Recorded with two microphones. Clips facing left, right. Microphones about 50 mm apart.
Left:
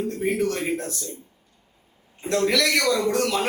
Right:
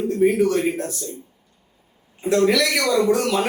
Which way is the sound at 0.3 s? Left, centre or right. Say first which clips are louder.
Right 5 dB; centre.